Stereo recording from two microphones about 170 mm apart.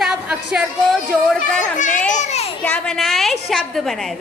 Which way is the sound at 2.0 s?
45° left (ahead or behind).